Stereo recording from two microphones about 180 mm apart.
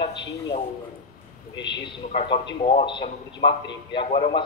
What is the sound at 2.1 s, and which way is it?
A man's voice, 35° left (ahead or behind).